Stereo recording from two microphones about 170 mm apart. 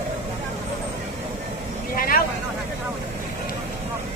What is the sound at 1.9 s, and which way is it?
Vehicle, 60° left (ahead or behind).